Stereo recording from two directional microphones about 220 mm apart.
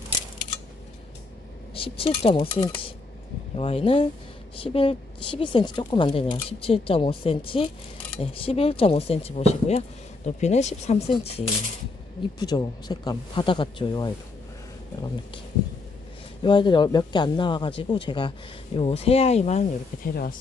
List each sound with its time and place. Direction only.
1.7 s speech: 25° left (ahead or behind)
16.4 s speech: 20° left (ahead or behind)
20.1 s speech: 40° left (ahead or behind)